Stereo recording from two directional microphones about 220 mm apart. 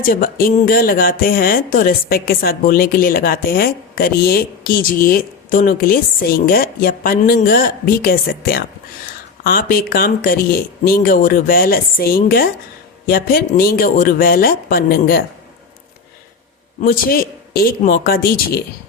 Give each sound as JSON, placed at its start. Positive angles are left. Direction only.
{"t": 0.0, "sound": "speech", "side_deg": 40}
{"t": 16.8, "sound": "a man's voice", "side_deg": 40}